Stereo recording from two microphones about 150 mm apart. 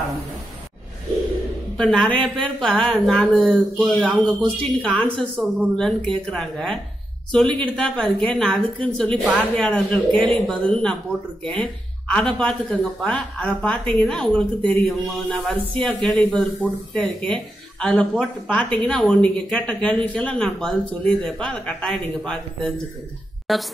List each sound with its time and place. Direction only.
1.8 s a woman's voice: 5° left (ahead or behind)